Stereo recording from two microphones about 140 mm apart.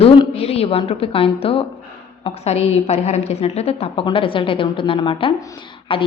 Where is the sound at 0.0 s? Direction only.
45° left (ahead or behind).